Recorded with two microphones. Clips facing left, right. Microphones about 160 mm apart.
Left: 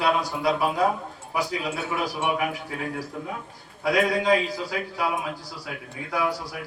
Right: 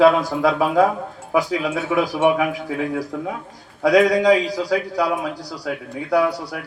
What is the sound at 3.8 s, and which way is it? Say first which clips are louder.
A man's voice: right 8 dB; 90° right.